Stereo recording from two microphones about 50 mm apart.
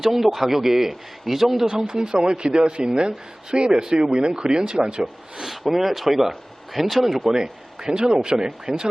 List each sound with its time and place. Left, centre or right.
0.0 s a man's voice: centre
5.7 s a man's voice: centre
7.3 s speech: centre